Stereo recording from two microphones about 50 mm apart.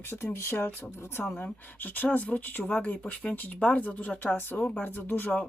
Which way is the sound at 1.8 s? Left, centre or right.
Left.